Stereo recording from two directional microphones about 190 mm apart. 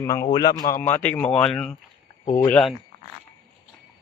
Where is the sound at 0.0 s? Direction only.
15° left (ahead or behind).